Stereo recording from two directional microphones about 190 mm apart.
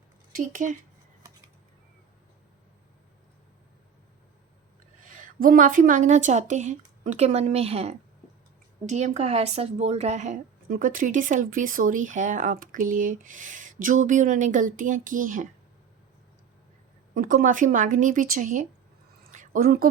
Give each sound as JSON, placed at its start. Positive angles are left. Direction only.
{"t": 0.3, "sound": "a woman's voice", "side_deg": -40}
{"t": 5.4, "sound": "a woman's voice", "side_deg": -45}
{"t": 17.2, "sound": "a woman's voice", "side_deg": -45}
{"t": 19.3, "sound": "a sound", "side_deg": -45}